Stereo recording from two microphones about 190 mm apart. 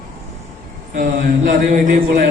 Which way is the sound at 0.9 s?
40° right (ahead or behind).